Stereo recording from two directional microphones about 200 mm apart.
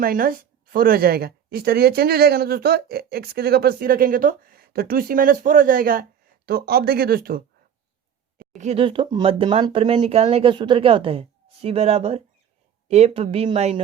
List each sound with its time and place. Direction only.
0.0 s speech: 45° right (ahead or behind)
8.4 s speech: 35° right (ahead or behind)